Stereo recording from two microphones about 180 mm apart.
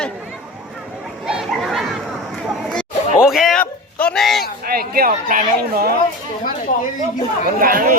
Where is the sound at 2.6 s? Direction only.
Centre (ahead or behind).